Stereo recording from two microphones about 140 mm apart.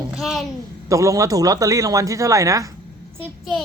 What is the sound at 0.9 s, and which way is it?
Speech, 20° right (ahead or behind).